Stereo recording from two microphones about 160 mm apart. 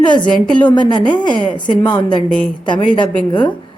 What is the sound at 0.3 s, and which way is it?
Speech, 5° left (ahead or behind).